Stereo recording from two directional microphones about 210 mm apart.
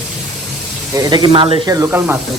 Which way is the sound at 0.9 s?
20° right (ahead or behind).